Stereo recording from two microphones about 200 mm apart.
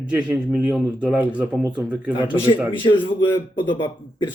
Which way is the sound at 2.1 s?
25° left (ahead or behind).